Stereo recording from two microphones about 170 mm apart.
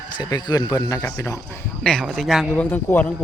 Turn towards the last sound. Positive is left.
turn(degrees=10)  # may be behind; listen again after turning